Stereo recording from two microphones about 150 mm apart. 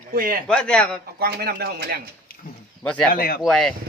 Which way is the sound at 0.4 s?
5° left (ahead or behind).